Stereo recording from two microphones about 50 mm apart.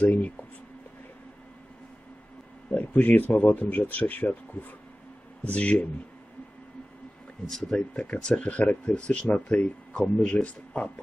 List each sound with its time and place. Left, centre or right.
0.0 s speech: left
2.7 s speech: left
5.4 s speech: left
7.7 s speech: left